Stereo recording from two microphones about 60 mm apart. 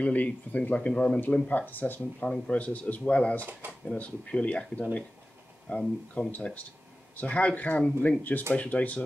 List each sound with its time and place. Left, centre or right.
0.0 s speech: left
1.7 s speech: left
2.2 s speech: centre
5.7 s speech: centre
6.3 s speech: left